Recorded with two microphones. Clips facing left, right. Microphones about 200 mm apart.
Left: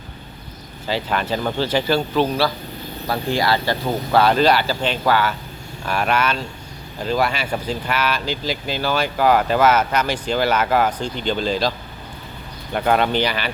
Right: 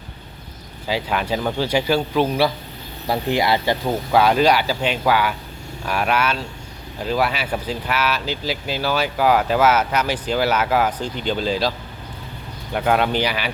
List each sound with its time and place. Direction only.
0.9 s speech: 10° right (ahead or behind)
12.7 s speech: 5° right (ahead or behind)